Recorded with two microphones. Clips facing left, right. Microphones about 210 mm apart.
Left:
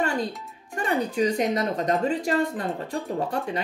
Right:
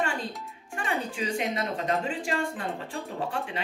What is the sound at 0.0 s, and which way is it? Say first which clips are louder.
Music: left 5 dB; 40° left (ahead or behind).